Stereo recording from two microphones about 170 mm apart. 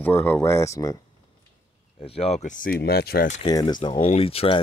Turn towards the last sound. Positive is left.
turn(degrees=35)  # may be behind; listen again after turning